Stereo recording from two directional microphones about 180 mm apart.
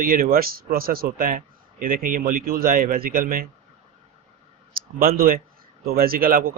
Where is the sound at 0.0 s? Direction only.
50° right (ahead or behind).